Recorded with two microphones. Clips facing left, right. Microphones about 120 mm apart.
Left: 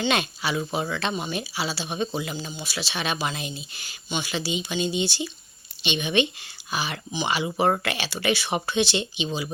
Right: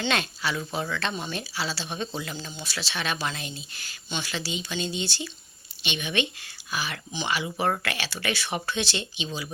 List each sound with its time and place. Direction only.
0.0 s speech: 15° left (ahead or behind)